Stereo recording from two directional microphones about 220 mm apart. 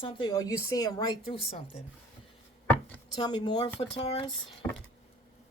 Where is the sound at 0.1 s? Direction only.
20° left (ahead or behind).